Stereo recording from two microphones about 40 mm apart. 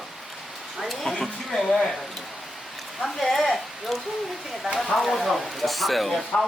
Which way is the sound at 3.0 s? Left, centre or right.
Centre.